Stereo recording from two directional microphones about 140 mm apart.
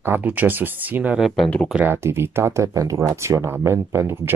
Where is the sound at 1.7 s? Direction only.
15° right (ahead or behind).